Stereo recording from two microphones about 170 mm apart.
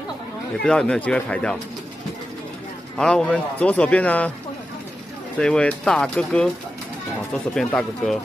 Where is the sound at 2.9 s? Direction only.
5° left (ahead or behind).